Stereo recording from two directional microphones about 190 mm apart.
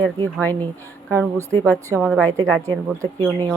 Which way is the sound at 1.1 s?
15° right (ahead or behind).